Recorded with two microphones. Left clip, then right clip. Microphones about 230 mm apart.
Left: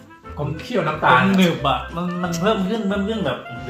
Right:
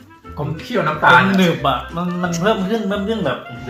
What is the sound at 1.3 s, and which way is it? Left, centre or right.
Speech, centre.